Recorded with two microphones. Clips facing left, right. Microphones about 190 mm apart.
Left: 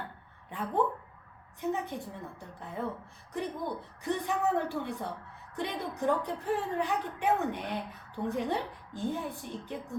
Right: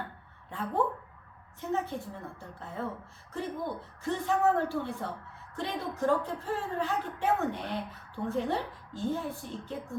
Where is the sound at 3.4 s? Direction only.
15° left (ahead or behind).